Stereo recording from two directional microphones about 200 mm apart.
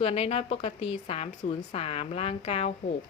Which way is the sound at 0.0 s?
30° left (ahead or behind).